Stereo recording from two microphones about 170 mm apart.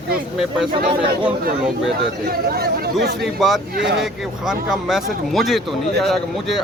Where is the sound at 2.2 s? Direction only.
65° right (ahead or behind).